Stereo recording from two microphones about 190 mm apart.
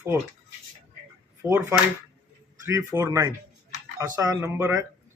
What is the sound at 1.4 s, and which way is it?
Speech, 15° right (ahead or behind).